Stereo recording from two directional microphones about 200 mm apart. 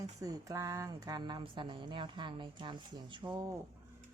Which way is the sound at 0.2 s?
15° right (ahead or behind).